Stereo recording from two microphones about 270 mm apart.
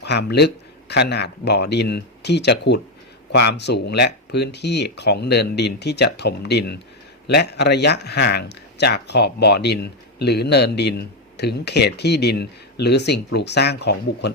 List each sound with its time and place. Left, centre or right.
0.0 s speech: left